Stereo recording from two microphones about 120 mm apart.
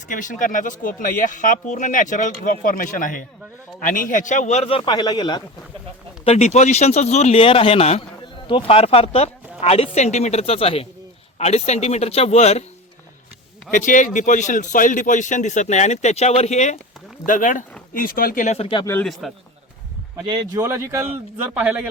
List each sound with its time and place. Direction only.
0.1 s speech: 90° left; by 4.7 s 75° left (ahead or behind)
4.7 s speech: 50° left (ahead or behind)
4.9 s speech: 35° left (ahead or behind)
6.2 s speech: 65° left (ahead or behind)
8.4 s speech: 50° left (ahead or behind)
11.3 s speech: 65° left (ahead or behind)
13.7 s speech: 90° left; by 16.7 s 70° left (ahead or behind)
17.2 s speech: 90° left
18.3 s speech: 75° left (ahead or behind)
19.2 s a man's voice: centre (ahead or behind)
20.1 s speech: 35° right (ahead or behind)
20.7 s speech: 25° right (ahead or behind)
21.4 s speech: 15° right (ahead or behind)